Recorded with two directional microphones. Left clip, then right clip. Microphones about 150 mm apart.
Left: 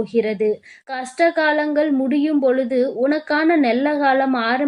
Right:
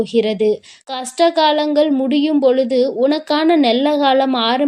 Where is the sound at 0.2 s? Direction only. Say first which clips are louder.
Right 3 dB; 25° right (ahead or behind).